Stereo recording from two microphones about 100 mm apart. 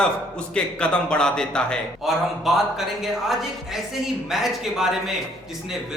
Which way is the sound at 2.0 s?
Centre (ahead or behind).